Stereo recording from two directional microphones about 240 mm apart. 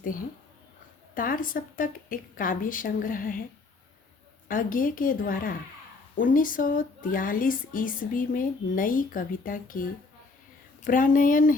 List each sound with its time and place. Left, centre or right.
0.0 s speech: left
4.4 s speech: left